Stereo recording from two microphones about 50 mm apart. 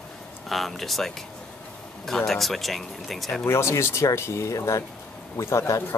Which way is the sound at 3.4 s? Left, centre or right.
Left.